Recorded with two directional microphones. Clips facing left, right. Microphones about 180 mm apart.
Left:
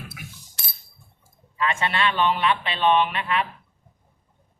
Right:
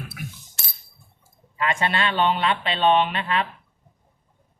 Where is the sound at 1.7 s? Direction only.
35° right (ahead or behind).